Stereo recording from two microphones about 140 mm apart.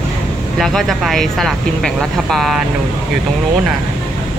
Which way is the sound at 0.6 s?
Centre (ahead or behind).